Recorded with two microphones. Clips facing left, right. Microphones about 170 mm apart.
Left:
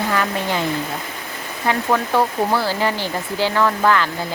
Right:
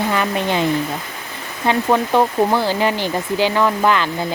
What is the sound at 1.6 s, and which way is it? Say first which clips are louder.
Speech: right 3 dB; 20° right (ahead or behind).